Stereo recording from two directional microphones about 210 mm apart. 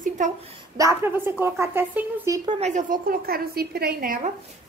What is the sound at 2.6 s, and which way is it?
A woman's voice, 35° right (ahead or behind).